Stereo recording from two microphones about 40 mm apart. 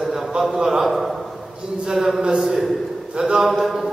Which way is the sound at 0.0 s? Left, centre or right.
Centre.